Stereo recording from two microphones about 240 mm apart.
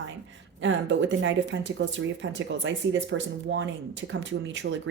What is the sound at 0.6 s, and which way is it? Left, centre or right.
Speech, right.